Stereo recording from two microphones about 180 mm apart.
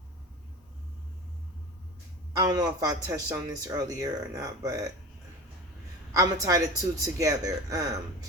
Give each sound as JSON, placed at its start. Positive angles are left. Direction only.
{"t": 2.3, "sound": "speech", "side_deg": -20}
{"t": 6.1, "sound": "speech", "side_deg": -20}